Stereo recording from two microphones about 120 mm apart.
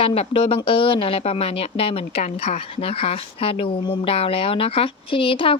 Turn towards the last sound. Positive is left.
turn(degrees=45)  # may be behind; listen again after turning